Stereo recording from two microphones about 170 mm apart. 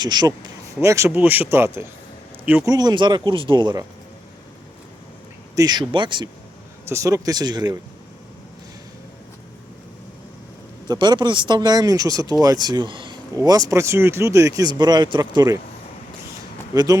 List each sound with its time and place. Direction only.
0.0 s speech: 25° right (ahead or behind); by 2.6 s 10° right (ahead or behind)
2.6 s speech: 25° right (ahead or behind)
5.5 s speech: 25° right (ahead or behind)
6.8 s speech: 20° right (ahead or behind)
10.8 s speech: 25° right (ahead or behind)
16.7 s speech: 20° right (ahead or behind)